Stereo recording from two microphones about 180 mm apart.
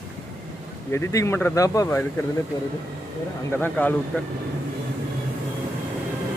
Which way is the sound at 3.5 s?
10° left (ahead or behind).